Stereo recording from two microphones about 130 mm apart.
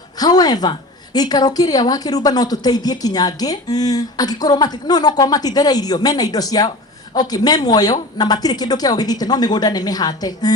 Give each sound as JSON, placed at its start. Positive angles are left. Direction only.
{"t": 0.2, "sound": "a woman's voice", "side_deg": 30}